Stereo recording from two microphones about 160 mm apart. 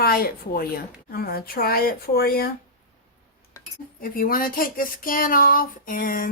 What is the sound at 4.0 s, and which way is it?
Speech, 65° left (ahead or behind).